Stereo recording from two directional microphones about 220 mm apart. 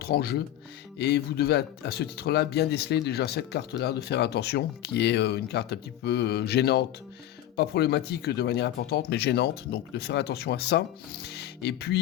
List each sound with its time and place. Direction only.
0.0 s speech: 45° left (ahead or behind)